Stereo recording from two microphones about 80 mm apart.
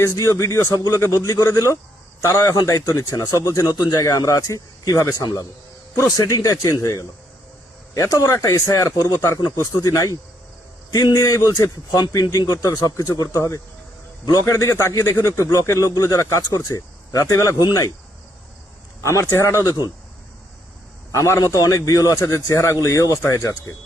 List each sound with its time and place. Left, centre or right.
0.0 s a man's voice: left
17.6 s speech: left
19.0 s a man's voice: left
21.1 s speech: left